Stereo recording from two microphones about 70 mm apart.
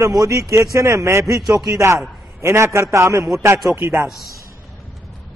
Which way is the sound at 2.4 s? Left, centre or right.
Right.